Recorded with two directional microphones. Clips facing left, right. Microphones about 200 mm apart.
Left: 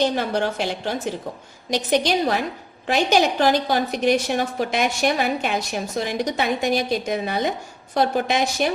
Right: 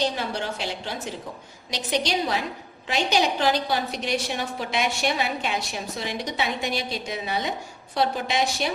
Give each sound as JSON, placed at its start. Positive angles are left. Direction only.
{"t": 0.0, "sound": "a woman's voice", "side_deg": 50}